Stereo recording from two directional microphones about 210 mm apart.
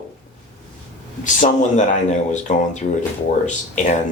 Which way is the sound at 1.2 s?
35° left (ahead or behind).